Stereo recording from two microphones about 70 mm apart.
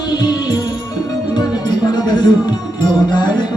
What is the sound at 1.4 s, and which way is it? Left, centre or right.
Music, left.